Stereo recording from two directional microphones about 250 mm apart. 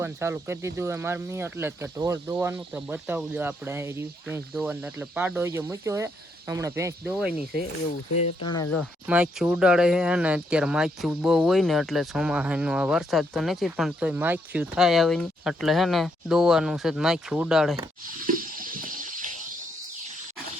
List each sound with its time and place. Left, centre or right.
0.0 s speech: centre
8.2 s speech: centre
8.7 s speech: centre
18.3 s a sound: right